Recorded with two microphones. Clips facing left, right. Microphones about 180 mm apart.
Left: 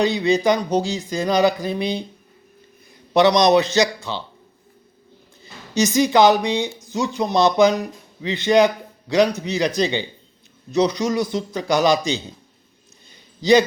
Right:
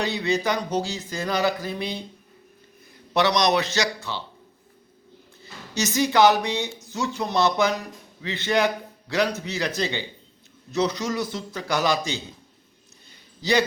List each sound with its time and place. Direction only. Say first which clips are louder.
0.0 s speech: left 7 dB; 15° left (ahead or behind)
3.1 s speech: left 6 dB; 20° left (ahead or behind)
5.4 s speech: left 7 dB; 15° left (ahead or behind)
13.4 s speech: left 7 dB; 20° left (ahead or behind)